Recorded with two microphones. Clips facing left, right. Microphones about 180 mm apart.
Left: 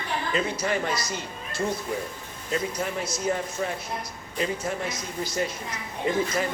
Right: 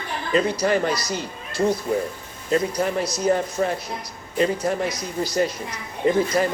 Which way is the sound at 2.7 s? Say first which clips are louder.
Right 6 dB; 35° right (ahead or behind).